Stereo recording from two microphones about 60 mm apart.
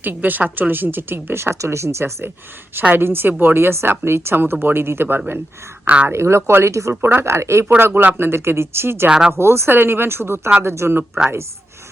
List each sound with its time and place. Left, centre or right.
0.0 s speech: right
2.9 s speech: right
5.8 s speech: right
6.1 s speech: right
7.0 s speech: right